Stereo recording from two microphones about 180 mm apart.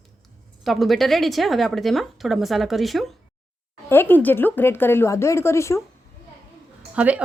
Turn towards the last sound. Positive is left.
turn(degrees=-10)  # may be behind; listen again after turning